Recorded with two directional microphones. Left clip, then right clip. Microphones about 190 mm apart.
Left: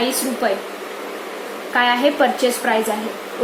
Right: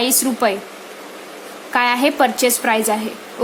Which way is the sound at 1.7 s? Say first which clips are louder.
Even; 35° right (ahead or behind).